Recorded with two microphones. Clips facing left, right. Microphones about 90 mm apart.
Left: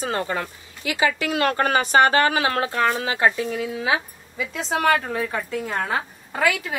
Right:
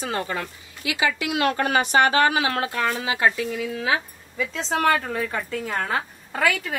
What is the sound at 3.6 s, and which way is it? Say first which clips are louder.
Speech: even; 10° left (ahead or behind).